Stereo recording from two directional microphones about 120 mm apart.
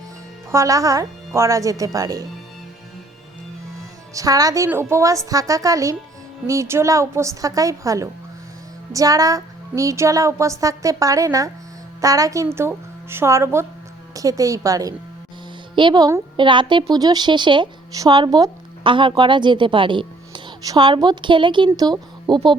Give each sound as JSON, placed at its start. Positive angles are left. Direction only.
{"t": 0.5, "sound": "speech", "side_deg": -25}
{"t": 4.1, "sound": "speech", "side_deg": -30}
{"t": 15.7, "sound": "a woman's voice", "side_deg": -40}
{"t": 16.4, "sound": "a woman's voice", "side_deg": -40}